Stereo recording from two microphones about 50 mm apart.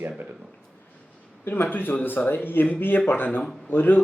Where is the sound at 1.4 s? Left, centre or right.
Left.